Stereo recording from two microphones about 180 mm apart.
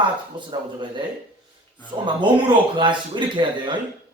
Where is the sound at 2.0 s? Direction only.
25° right (ahead or behind).